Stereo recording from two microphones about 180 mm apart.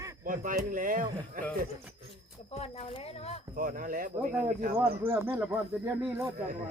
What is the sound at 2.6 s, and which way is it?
Speech, 35° left (ahead or behind).